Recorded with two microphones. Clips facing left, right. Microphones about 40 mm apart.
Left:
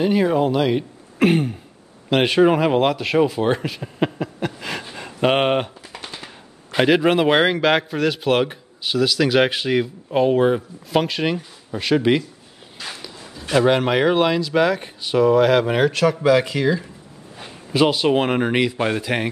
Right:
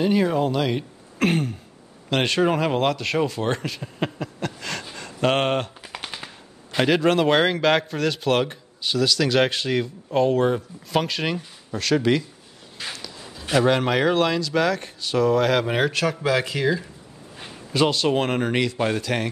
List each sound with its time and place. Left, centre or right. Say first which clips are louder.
0.0 s speech: left 3 dB; centre
4.9 s a sound: left 3 dB; centre
6.0 s shuffling cards: even; centre
6.7 s speech: left 3 dB; centre
17.7 s speech: left 3 dB; centre